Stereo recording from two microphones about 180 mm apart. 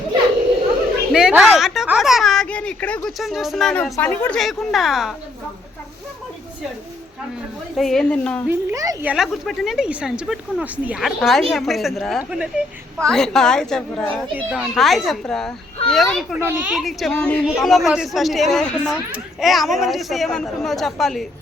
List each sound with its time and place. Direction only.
1.1 s a sound: 5° right (ahead or behind)
3.9 s speech: 10° left (ahead or behind)
7.8 s speech: centre (ahead or behind)
8.4 s speech: 20° right (ahead or behind)
9.0 s speech: centre (ahead or behind)
16.4 s speech: 10° right (ahead or behind)